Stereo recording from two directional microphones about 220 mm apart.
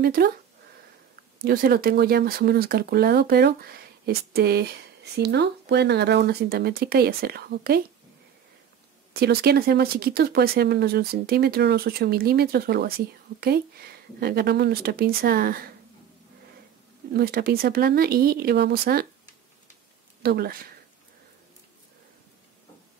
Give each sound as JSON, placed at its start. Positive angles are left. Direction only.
{"t": 0.0, "sound": "speech", "side_deg": -45}
{"t": 1.4, "sound": "speech", "side_deg": -45}
{"t": 9.1, "sound": "speech", "side_deg": -45}
{"t": 17.1, "sound": "speech", "side_deg": -45}
{"t": 20.2, "sound": "speech", "side_deg": -45}